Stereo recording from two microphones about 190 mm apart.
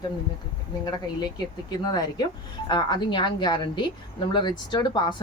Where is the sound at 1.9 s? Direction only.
20° left (ahead or behind).